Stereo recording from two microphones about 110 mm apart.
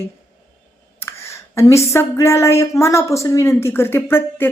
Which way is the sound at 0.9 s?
25° left (ahead or behind).